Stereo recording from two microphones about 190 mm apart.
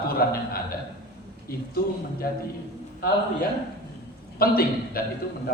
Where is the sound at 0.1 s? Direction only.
50° left (ahead or behind).